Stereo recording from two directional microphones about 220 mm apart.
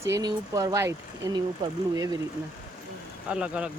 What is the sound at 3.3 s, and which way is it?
Speech, 5° right (ahead or behind).